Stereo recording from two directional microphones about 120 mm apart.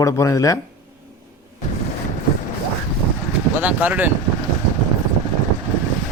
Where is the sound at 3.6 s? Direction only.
15° right (ahead or behind).